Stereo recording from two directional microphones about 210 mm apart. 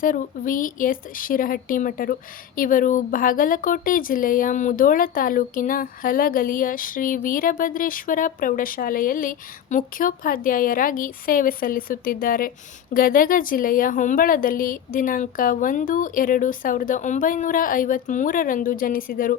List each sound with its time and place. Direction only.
0.0 s speech: 40° left (ahead or behind)